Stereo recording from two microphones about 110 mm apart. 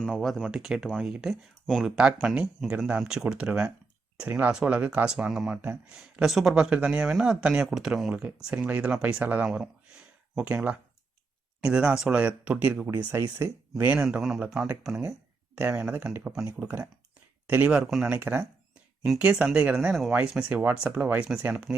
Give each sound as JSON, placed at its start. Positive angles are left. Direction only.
{"t": 0.0, "sound": "a man's voice", "side_deg": 5}
{"t": 19.2, "sound": "a man's voice", "side_deg": -5}